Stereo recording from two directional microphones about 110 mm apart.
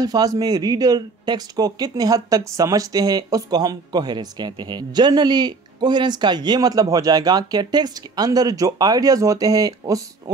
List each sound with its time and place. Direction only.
0.0 s speech: 35° right (ahead or behind)